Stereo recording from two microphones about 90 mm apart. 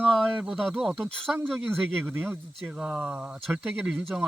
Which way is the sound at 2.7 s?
10° right (ahead or behind).